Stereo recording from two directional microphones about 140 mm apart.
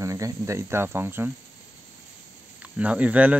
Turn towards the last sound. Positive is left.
turn(degrees=-10)  # may be behind; listen again after turning